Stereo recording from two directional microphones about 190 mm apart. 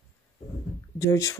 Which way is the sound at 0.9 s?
15° left (ahead or behind).